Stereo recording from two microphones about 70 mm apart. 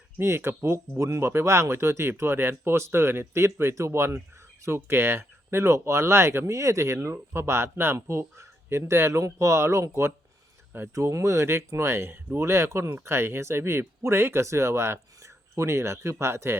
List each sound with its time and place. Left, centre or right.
0.2 s speech: right